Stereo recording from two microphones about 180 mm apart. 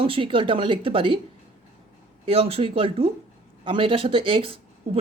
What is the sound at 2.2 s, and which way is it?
Speech, 30° right (ahead or behind).